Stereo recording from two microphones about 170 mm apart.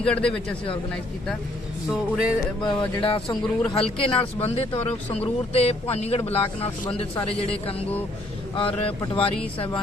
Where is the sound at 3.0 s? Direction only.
30° left (ahead or behind).